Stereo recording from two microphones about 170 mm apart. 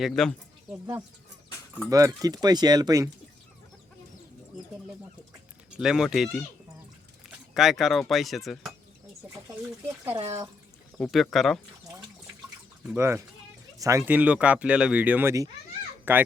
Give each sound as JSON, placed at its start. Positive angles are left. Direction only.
{"t": 0.0, "sound": "speech", "side_deg": 5}
{"t": 0.7, "sound": "speech", "side_deg": -15}
{"t": 5.8, "sound": "speech", "side_deg": -5}
{"t": 10.1, "sound": "speech", "side_deg": -35}
{"t": 10.9, "sound": "speech", "side_deg": 0}
{"t": 13.0, "sound": "speech", "side_deg": -15}
{"t": 14.0, "sound": "speech", "side_deg": -10}